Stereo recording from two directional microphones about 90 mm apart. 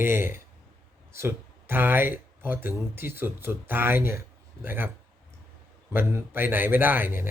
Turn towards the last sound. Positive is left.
turn(degrees=-25)  # may be behind; listen again after turning